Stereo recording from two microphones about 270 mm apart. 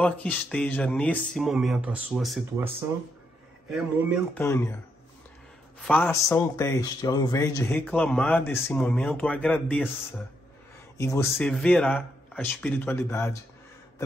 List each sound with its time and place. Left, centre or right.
0.0 s speech: centre
4.4 s a man's voice: centre
5.8 s a man's voice: centre
11.0 s a man's voice: centre